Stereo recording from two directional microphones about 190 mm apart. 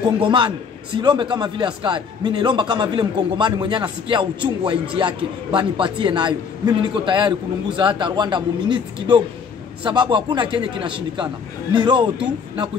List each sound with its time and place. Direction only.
0.2 s a man's voice: 25° right (ahead or behind)